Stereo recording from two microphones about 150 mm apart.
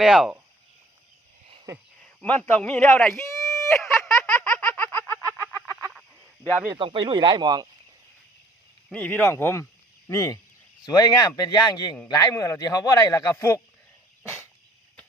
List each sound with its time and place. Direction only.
0.0 s speech: centre (ahead or behind)
2.0 s speech: 5° left (ahead or behind)
3.8 s speech: 20° left (ahead or behind)
4.0 s a sound: 5° left (ahead or behind)
5.5 s fowl: 15° left (ahead or behind)
6.7 s speech: 35° right (ahead or behind)
8.9 s speech: 10° left (ahead or behind)